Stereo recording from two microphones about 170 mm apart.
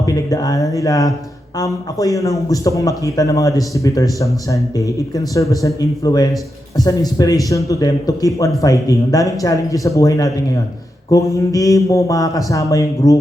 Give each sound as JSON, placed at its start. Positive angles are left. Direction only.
{"t": 0.0, "sound": "a man's voice", "side_deg": 20}